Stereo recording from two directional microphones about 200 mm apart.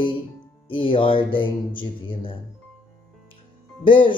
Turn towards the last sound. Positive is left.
turn(degrees=25)  # may be behind; listen again after turning